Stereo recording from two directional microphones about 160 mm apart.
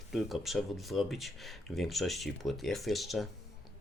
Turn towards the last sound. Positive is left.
turn(degrees=0)  # may be behind; listen again after turning